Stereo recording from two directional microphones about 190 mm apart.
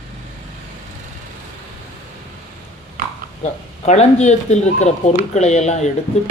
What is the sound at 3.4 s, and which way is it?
Speech, 35° left (ahead or behind).